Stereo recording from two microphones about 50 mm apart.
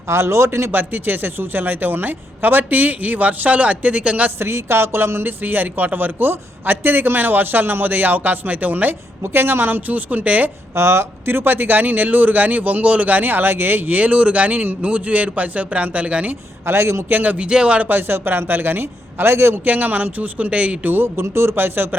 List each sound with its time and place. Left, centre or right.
0.1 s music: right
0.7 s a woman's voice: right
4.4 s music: right
5.4 s a woman's voice: right
9.2 s a woman's voice: right
10.8 s music: right
11.3 s a woman's voice: right
16.6 s music: right
17.1 s a woman's voice: right
17.3 s speech: right
17.8 s a man's voice: right
19.6 s a woman's voice: right
20.9 s a man's voice: right